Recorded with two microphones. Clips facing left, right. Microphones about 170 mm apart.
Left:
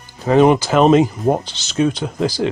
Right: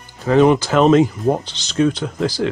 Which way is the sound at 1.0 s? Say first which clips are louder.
Even; 20° left (ahead or behind).